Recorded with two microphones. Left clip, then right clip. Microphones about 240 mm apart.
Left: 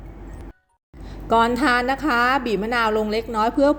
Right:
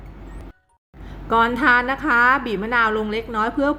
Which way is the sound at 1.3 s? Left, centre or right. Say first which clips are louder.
Right 1 dB; centre.